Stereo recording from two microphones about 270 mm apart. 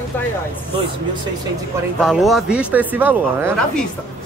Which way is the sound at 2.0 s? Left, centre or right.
Centre.